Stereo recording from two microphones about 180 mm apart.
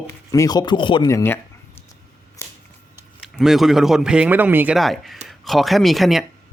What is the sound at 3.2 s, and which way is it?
A man's voice, centre (ahead or behind).